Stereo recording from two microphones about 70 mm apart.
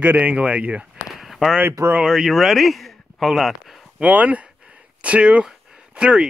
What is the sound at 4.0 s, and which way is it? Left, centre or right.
Speech, right.